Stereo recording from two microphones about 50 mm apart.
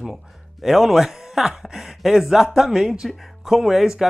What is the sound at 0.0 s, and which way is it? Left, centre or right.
Speech, centre.